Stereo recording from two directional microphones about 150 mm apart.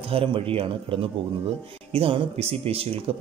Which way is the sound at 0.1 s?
35° right (ahead or behind).